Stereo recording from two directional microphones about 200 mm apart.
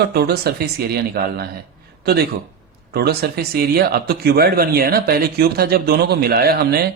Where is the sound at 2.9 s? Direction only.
50° right (ahead or behind).